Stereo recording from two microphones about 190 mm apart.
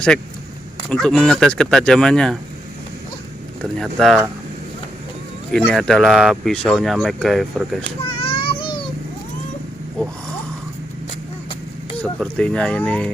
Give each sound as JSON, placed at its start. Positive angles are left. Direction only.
{"t": 0.9, "sound": "speech", "side_deg": 5}
{"t": 3.6, "sound": "speech", "side_deg": 0}
{"t": 5.5, "sound": "speech", "side_deg": 5}
{"t": 7.9, "sound": "a sound", "side_deg": 30}
{"t": 12.0, "sound": "speech", "side_deg": 5}